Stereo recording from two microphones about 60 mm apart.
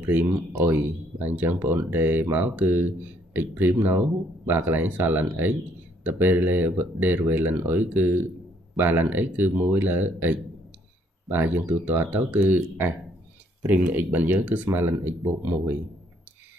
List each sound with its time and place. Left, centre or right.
0.0 s speech: right
14.7 s speech: right